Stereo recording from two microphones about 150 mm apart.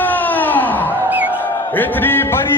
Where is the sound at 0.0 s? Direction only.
10° left (ahead or behind).